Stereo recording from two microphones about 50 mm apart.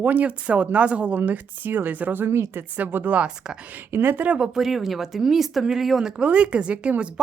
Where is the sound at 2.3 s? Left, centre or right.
Right.